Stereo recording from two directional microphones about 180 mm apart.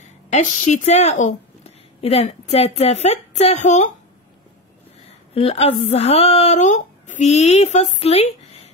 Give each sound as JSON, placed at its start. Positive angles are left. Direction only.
{"t": 0.0, "sound": "speech", "side_deg": 40}
{"t": 5.3, "sound": "speech", "side_deg": 35}